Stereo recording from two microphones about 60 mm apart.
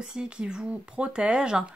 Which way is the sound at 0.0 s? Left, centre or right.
Centre.